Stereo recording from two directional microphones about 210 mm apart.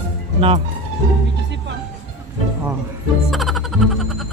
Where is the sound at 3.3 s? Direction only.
Centre (ahead or behind).